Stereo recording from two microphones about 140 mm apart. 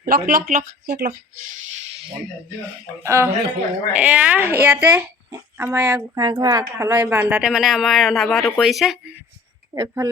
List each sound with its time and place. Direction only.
0.0 s speech: 90° right
3.0 s speech: 20° right (ahead or behind)
3.9 s speech: 10° right (ahead or behind)
6.0 s speech: 30° right (ahead or behind); by 9.1 s centre (ahead or behind)
9.7 s speech: 20° right (ahead or behind)